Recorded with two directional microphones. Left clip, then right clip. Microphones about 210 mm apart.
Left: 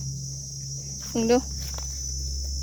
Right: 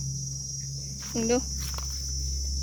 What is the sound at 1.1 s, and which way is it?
Speech, 20° left (ahead or behind).